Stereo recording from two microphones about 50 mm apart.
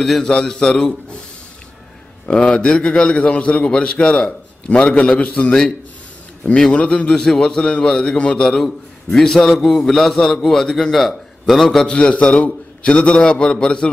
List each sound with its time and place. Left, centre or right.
0.0 s a man's voice: centre
2.2 s a man's voice: left
6.7 s a man's voice: left; by 11.6 s centre
11.6 s a man's voice: centre